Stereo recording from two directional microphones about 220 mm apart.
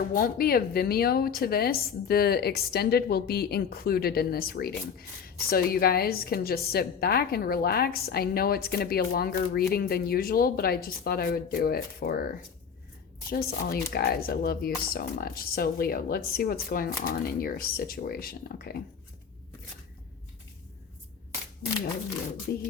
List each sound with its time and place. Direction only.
0.1 s a woman's voice: 40° left (ahead or behind)
13.3 s a woman's voice: 45° left (ahead or behind)